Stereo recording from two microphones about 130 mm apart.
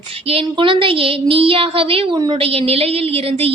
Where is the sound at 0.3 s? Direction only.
45° right (ahead or behind).